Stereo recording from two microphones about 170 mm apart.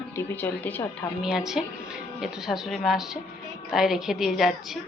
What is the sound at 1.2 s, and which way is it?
A woman's voice, 5° right (ahead or behind).